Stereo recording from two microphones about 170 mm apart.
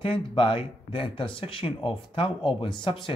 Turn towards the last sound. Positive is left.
turn(degrees=30)  # may be behind; listen again after turning